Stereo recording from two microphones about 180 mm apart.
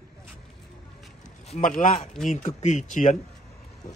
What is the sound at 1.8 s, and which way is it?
Speech, 45° left (ahead or behind).